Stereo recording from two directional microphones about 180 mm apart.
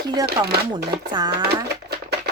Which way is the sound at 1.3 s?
60° right (ahead or behind).